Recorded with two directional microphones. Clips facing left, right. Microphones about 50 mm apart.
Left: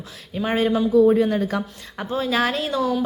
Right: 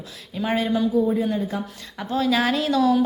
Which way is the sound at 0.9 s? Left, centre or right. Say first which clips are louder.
Left 5 dB; left.